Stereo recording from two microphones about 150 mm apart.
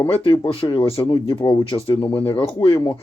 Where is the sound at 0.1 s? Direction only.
35° left (ahead or behind).